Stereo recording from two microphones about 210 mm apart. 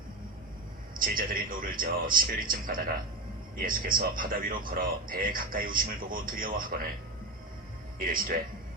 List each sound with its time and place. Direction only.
0.9 s a man's voice: 40° right (ahead or behind)
7.9 s a man's voice: 40° right (ahead or behind)